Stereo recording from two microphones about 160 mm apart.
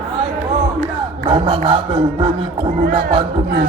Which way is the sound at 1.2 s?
35° right (ahead or behind).